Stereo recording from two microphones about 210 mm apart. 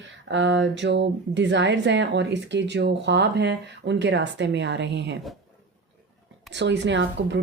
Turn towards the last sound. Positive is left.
turn(degrees=-60)  # may be behind; listen again after turning